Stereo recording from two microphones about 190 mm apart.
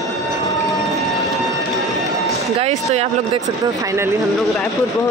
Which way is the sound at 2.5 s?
35° right (ahead or behind).